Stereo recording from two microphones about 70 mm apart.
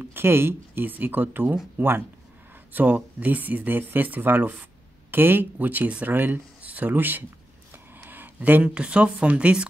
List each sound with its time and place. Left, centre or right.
0.0 s speech: right; by 9.7 s centre